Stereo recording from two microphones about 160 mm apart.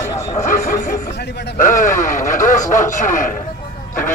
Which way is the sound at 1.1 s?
90° left.